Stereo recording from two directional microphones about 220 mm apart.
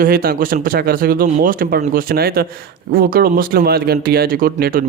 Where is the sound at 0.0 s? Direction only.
40° right (ahead or behind).